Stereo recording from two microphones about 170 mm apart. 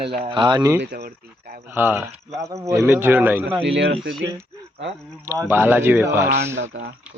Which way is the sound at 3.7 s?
90° right.